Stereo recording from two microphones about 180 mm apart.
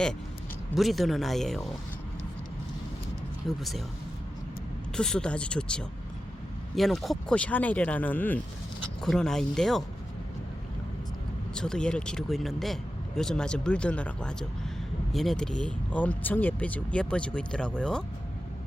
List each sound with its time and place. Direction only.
0.7 s speech: centre (ahead or behind)
3.4 s speech: centre (ahead or behind)
4.9 s speech: 5° left (ahead or behind)
11.5 s speech: 5° left (ahead or behind)